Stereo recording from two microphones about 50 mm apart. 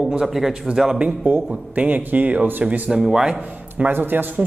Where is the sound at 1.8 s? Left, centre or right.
Right.